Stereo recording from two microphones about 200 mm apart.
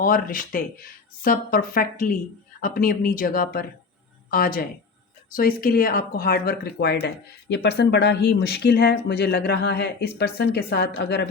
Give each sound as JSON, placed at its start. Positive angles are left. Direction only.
{"t": 0.0, "sound": "speech", "side_deg": 45}